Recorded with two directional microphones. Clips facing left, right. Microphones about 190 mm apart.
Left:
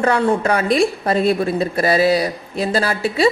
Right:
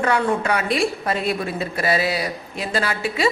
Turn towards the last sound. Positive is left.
turn(degrees=35)  # may be behind; listen again after turning